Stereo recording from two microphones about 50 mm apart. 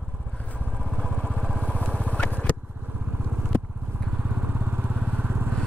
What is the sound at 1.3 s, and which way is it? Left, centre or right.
Vehicle, right.